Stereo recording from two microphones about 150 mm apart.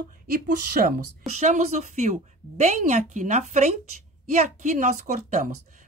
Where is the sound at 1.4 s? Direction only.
50° right (ahead or behind).